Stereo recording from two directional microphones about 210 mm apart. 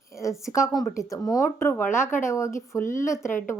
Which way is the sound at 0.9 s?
15° left (ahead or behind).